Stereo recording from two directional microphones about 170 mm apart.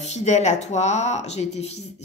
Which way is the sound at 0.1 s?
40° left (ahead or behind).